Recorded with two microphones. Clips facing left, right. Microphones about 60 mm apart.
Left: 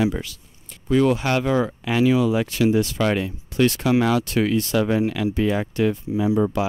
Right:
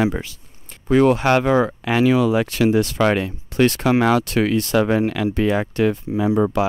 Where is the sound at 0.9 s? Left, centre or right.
Right.